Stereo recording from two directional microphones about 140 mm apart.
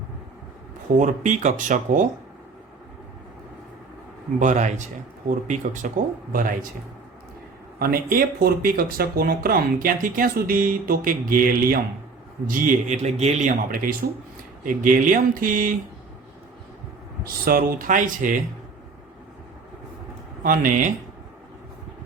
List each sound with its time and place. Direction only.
0.9 s speech: 65° right (ahead or behind)
4.4 s speech: 60° right (ahead or behind)
6.3 s speech: 90° right
7.8 s speech: 90° right
12.5 s a man's voice: 80° right
13.1 s a man's voice: 50° right (ahead or behind)
13.7 s speech: 90° right
14.6 s speech: 75° right (ahead or behind)
17.2 s speech: 90° right; by 18.3 s 70° right (ahead or behind)
20.4 s speech: 75° right (ahead or behind)